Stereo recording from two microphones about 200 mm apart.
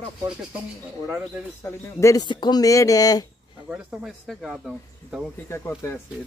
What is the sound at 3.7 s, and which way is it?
Speech, 5° right (ahead or behind).